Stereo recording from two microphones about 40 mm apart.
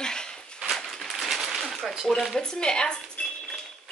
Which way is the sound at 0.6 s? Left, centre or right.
Centre.